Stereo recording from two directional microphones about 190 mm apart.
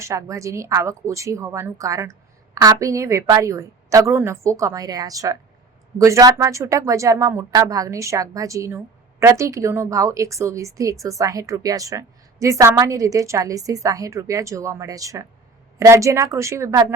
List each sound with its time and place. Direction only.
0.0 s a woman's voice: 15° right (ahead or behind)